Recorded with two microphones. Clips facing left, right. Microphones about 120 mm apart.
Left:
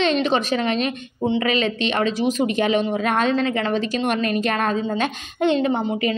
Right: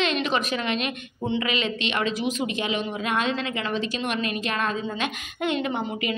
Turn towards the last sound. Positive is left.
turn(degrees=35)  # may be behind; listen again after turning